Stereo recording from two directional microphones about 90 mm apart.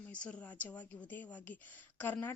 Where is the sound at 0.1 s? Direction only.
15° left (ahead or behind).